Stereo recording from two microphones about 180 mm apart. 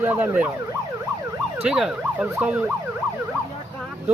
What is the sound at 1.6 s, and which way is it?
Emergency vehicle, 5° right (ahead or behind).